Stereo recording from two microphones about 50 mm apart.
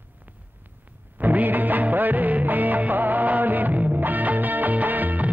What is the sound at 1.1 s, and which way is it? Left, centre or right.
Music of bollywood, right.